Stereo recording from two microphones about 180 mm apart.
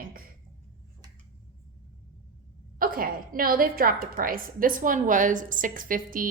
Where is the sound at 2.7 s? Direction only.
50° right (ahead or behind).